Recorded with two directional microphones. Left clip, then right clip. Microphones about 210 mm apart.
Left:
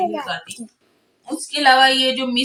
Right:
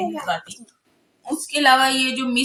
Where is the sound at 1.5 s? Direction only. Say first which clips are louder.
Left 3 dB; 15° right (ahead or behind).